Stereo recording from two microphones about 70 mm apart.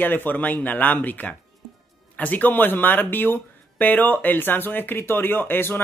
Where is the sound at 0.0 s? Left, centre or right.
Left.